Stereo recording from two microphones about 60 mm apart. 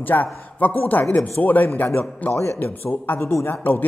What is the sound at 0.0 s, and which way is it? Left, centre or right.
A man's voice, left.